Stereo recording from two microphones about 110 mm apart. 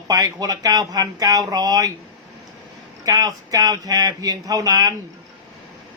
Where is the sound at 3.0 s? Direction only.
35° right (ahead or behind).